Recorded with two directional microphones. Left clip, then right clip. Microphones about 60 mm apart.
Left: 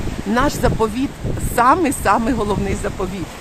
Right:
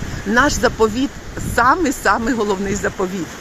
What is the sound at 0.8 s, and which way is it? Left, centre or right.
Speech, centre.